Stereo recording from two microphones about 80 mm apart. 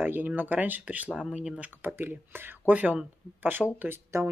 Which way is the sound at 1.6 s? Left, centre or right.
Right.